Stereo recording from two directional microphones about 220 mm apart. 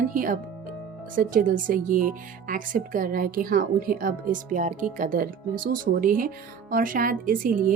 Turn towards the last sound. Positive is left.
turn(degrees=-40)  # may be behind; listen again after turning